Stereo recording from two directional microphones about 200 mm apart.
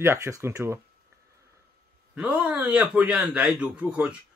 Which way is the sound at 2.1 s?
5° right (ahead or behind).